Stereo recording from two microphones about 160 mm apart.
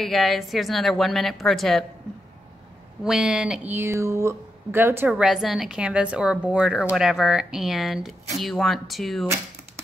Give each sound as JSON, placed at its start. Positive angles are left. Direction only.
{"t": 0.0, "sound": "speech", "side_deg": 0}
{"t": 3.0, "sound": "speech", "side_deg": -5}